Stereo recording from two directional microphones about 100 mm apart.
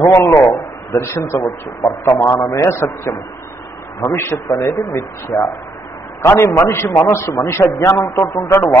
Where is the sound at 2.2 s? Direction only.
35° left (ahead or behind).